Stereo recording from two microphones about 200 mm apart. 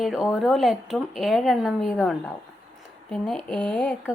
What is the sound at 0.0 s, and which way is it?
Speech, centre (ahead or behind).